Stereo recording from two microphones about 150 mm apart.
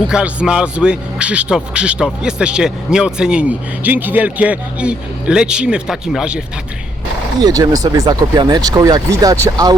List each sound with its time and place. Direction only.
0.1 s a man's voice: 5° right (ahead or behind)
7.4 s speech: 25° right (ahead or behind)